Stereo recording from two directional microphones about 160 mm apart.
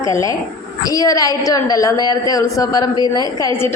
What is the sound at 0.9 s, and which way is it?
A woman's voice, 20° left (ahead or behind).